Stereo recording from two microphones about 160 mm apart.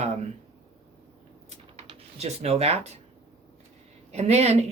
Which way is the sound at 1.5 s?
45° right (ahead or behind).